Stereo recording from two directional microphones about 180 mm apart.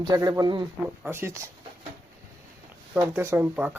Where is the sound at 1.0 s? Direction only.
15° right (ahead or behind).